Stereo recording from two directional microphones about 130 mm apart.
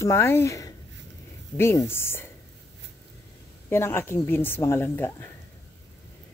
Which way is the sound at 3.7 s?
20° left (ahead or behind).